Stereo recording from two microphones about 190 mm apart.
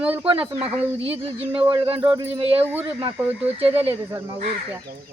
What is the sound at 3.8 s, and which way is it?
Speech, 30° right (ahead or behind).